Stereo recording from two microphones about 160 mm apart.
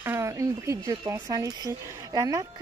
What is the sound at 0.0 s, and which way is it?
Speech, 15° right (ahead or behind).